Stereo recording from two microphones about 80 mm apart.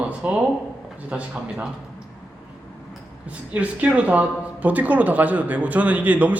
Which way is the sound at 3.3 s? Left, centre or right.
Centre.